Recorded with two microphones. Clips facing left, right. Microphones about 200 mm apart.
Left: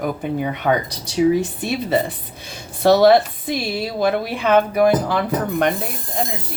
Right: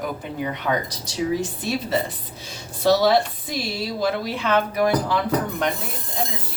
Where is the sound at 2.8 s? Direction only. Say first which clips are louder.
Left 5 dB; 60° left (ahead or behind).